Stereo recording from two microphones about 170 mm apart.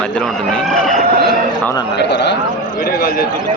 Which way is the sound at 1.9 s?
85° left.